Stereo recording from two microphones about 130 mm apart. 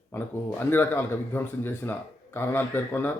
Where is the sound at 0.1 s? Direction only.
15° left (ahead or behind).